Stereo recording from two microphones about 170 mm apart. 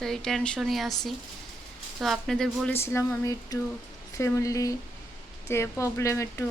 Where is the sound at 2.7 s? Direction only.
15° left (ahead or behind).